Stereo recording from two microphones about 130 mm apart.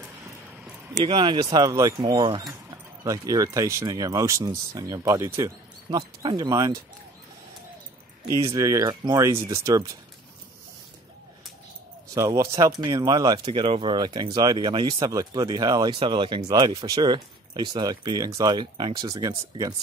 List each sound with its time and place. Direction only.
1.0 s speech: 40° right (ahead or behind)
2.1 s speech: 40° right (ahead or behind)
3.0 s speech: 25° right (ahead or behind)
5.9 s speech: 35° right (ahead or behind)
8.5 s speech: 25° right (ahead or behind)
12.1 s speech: 25° right (ahead or behind)